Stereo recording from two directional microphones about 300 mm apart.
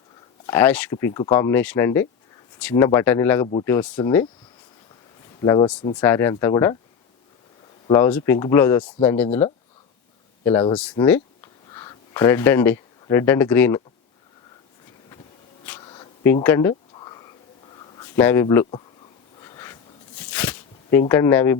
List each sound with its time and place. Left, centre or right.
0.4 s speech: centre
5.4 s speech: centre
7.9 s speech: centre
10.4 s speech: centre
15.6 s a sound: centre
21.1 s speech: centre